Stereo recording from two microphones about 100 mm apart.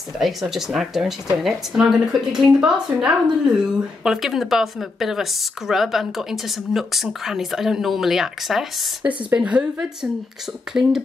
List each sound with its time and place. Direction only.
0.2 s speech: 5° right (ahead or behind)
9.0 s speech: 15° right (ahead or behind)